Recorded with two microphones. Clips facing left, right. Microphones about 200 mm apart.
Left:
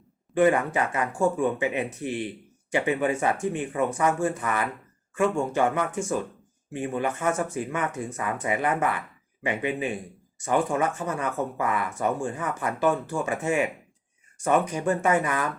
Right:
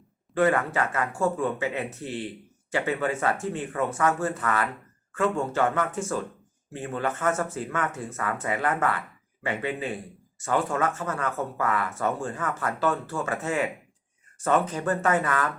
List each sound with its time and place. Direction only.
0.3 s speech: 15° left (ahead or behind)